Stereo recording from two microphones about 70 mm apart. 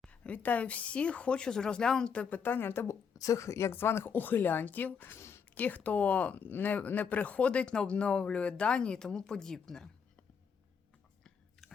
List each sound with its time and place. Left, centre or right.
0.1 s speech: centre
2.3 s speech: left
5.5 s speech: left; by 9.9 s centre